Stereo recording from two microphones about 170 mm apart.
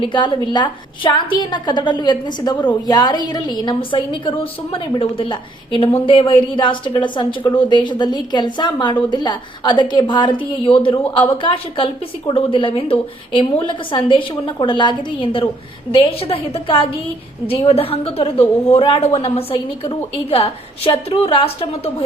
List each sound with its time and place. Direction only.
0.0 s a woman's voice: 25° left (ahead or behind)